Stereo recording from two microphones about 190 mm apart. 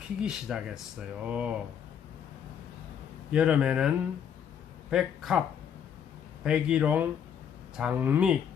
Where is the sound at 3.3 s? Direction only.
5° right (ahead or behind).